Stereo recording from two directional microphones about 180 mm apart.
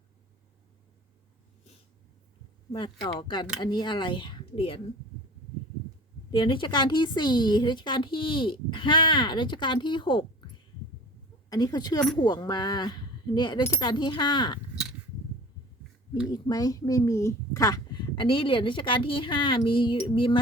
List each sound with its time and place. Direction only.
2.7 s a child's voice: 25° left (ahead or behind)
6.3 s a child's voice: 30° left (ahead or behind)
11.4 s a child's voice: 20° left (ahead or behind)
16.3 s a child's voice: 20° left (ahead or behind)